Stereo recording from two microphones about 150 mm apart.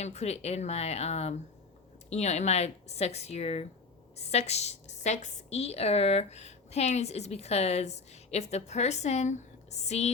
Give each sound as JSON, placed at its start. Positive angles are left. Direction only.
{"t": 0.0, "sound": "a woman's voice", "side_deg": 45}